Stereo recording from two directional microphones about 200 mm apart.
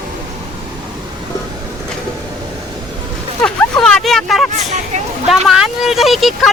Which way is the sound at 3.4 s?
5° left (ahead or behind).